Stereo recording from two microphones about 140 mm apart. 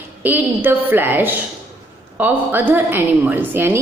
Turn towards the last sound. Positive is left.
turn(degrees=-15)  # may be behind; listen again after turning